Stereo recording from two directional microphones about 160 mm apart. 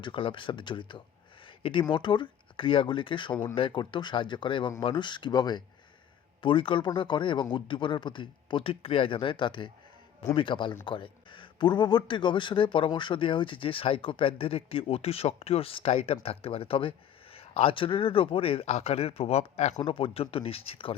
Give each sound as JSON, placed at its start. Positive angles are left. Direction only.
{"t": 0.0, "sound": "speech", "side_deg": 30}
{"t": 1.5, "sound": "a sound", "side_deg": 30}
{"t": 1.9, "sound": "speech", "side_deg": 30}